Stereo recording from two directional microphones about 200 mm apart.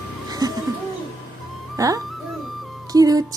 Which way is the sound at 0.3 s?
20° right (ahead or behind).